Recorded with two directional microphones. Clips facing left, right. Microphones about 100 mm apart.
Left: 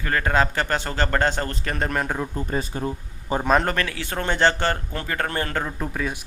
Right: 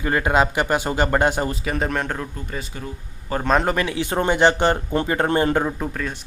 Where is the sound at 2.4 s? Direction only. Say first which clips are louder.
Left 5 dB; 40° left (ahead or behind).